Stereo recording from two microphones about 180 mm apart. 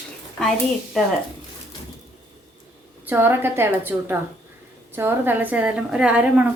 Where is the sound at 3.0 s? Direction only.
10° right (ahead or behind).